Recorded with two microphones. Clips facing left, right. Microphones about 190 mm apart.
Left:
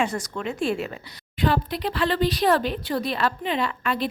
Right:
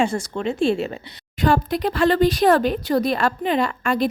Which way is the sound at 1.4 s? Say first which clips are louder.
Right 4 dB; 45° right (ahead or behind).